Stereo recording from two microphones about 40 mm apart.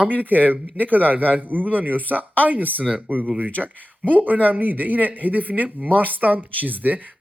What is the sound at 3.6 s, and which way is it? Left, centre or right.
Speech, right.